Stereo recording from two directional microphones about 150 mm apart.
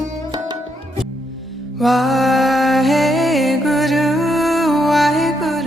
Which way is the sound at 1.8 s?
Centre (ahead or behind).